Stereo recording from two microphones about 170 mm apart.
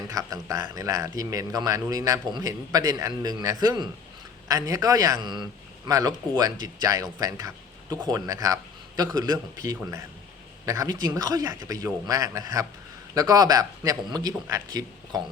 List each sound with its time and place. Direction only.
0.1 s a man's voice: 20° right (ahead or behind)